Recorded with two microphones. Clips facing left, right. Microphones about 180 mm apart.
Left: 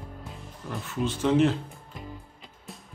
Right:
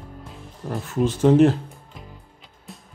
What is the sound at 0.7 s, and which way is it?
Speech, 45° right (ahead or behind).